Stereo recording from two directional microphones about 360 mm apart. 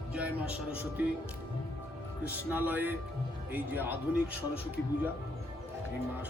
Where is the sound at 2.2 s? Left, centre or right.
Centre.